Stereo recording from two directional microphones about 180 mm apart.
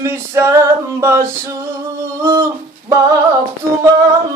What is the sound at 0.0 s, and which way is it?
Male singing, 15° right (ahead or behind).